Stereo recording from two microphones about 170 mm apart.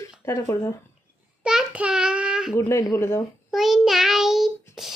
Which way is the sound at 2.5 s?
15° left (ahead or behind).